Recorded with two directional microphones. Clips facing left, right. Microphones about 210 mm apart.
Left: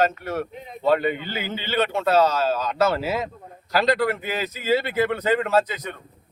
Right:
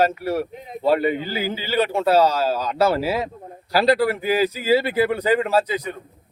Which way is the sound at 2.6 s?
10° right (ahead or behind).